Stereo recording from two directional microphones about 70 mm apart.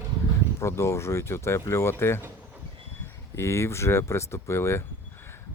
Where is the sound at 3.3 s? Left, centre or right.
Left.